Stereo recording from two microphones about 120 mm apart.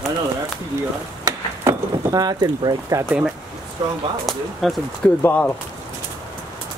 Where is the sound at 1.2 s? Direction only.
30° right (ahead or behind).